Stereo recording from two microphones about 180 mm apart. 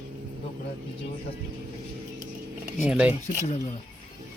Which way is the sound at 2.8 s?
5° right (ahead or behind).